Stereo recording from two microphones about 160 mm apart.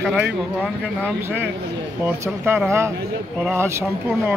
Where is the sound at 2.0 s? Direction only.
15° right (ahead or behind).